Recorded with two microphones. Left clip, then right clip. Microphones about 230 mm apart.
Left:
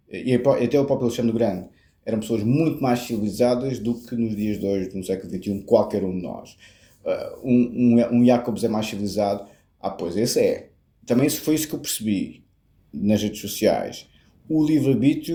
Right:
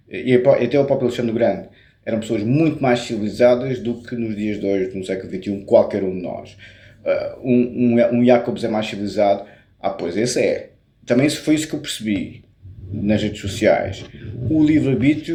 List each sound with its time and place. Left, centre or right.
0.1 s speech: left